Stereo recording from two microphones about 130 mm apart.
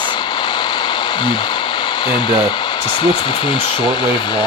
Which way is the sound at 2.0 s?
35° left (ahead or behind).